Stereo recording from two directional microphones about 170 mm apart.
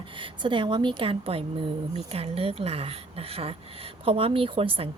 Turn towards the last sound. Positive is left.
turn(degrees=-30)  # may be behind; listen again after turning